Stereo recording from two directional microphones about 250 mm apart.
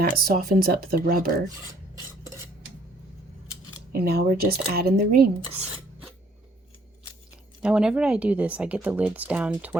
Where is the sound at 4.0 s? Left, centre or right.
Right.